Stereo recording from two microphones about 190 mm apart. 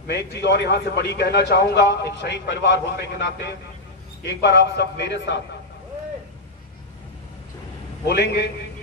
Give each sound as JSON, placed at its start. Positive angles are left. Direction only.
{"t": 0.0, "sound": "a man's voice", "side_deg": 60}
{"t": 8.1, "sound": "a man's voice", "side_deg": 60}